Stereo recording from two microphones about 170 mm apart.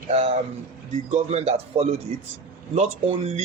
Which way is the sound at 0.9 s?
45° right (ahead or behind).